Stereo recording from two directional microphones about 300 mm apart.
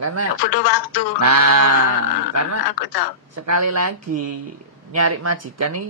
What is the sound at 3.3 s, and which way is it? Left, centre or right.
Speech, right.